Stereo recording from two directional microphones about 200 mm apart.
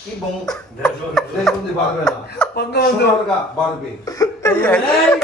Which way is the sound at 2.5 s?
55° left (ahead or behind).